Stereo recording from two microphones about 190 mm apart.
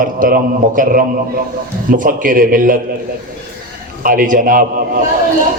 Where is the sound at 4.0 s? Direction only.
45° right (ahead or behind).